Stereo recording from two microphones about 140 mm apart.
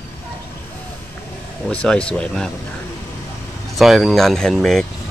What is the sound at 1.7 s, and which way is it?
Speech, 10° left (ahead or behind).